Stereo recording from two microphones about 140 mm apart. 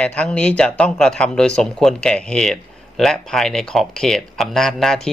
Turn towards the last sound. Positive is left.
turn(degrees=5)  # may be behind; listen again after turning